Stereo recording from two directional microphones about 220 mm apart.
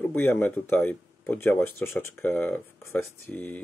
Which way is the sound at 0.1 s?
10° left (ahead or behind).